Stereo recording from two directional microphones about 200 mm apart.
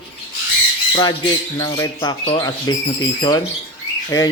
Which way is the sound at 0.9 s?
20° left (ahead or behind).